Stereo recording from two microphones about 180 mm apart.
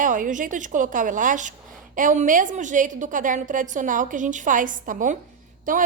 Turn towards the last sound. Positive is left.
turn(degrees=-50)  # may be behind; listen again after turning